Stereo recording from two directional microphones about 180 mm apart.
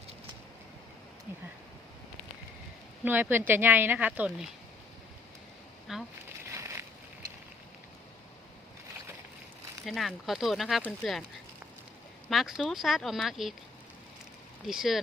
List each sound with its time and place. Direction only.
3.0 s speech: 10° right (ahead or behind)
5.9 s speech: centre (ahead or behind)
6.2 s a sound: 15° right (ahead or behind)
9.8 s speech: centre (ahead or behind)
12.3 s speech: centre (ahead or behind)
14.7 s speech: centre (ahead or behind)